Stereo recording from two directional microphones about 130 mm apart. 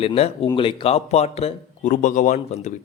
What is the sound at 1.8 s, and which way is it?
Speech, 80° left.